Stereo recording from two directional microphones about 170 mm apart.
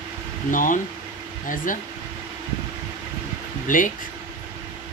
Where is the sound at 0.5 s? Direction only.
50° left (ahead or behind).